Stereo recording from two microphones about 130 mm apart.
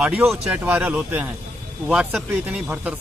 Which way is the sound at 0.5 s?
10° right (ahead or behind).